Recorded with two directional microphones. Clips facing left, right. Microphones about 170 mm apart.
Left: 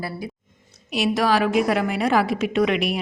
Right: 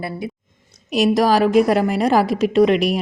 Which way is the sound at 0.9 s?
40° right (ahead or behind).